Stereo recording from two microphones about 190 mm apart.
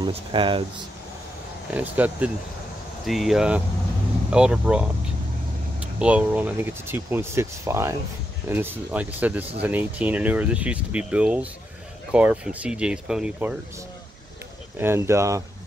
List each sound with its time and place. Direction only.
0.0 s speech: 25° right (ahead or behind)
1.7 s speech: 10° right (ahead or behind)
14.8 s speech: 15° right (ahead or behind)